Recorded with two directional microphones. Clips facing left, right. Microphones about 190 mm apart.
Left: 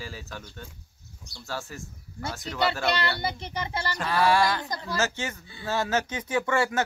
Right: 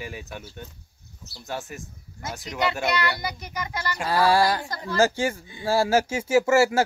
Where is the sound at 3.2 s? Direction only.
30° left (ahead or behind).